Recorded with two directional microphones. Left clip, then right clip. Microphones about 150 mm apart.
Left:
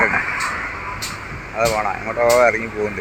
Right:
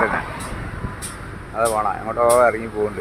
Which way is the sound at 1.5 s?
10° right (ahead or behind).